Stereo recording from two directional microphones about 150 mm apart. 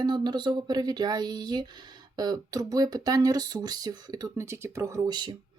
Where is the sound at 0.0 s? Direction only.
30° right (ahead or behind).